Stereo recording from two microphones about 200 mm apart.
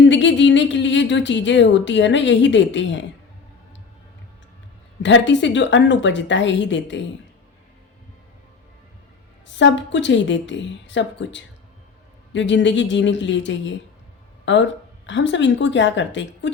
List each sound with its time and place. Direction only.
0.1 s speech: 65° left (ahead or behind)
5.0 s speech: 65° left (ahead or behind)
9.6 s a woman's voice: 65° left (ahead or behind)